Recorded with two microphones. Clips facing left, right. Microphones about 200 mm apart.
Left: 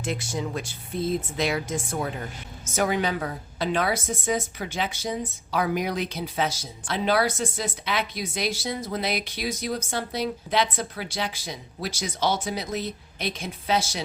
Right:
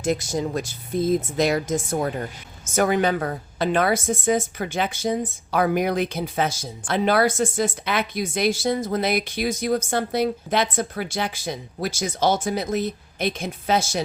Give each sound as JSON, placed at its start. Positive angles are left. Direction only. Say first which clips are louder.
{"t": 0.0, "sound": "a woman's voice", "louder": "right 6 dB", "side_deg": -40}